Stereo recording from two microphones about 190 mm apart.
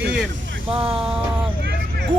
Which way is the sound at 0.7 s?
30° right (ahead or behind).